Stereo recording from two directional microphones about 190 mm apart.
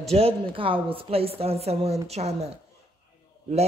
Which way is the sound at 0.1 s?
30° right (ahead or behind).